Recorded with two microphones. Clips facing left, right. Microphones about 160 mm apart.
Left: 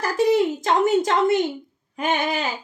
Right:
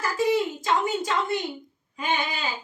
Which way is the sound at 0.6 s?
75° left (ahead or behind).